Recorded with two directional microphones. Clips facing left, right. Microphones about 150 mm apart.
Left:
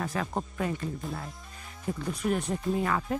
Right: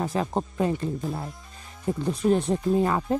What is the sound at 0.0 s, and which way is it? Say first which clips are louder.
Speech: right 5 dB; 25° right (ahead or behind).